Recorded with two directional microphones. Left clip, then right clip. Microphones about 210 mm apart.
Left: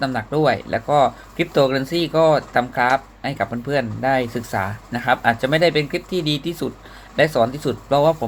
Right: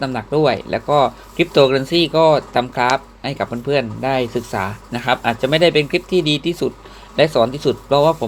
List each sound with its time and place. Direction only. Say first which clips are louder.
0.0 s speech: right 2 dB; 15° right (ahead or behind)